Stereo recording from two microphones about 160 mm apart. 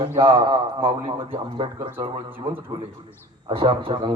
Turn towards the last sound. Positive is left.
turn(degrees=-30)  # may be behind; listen again after turning